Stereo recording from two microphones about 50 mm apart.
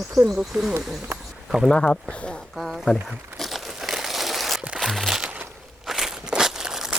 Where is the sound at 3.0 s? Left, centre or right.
Centre.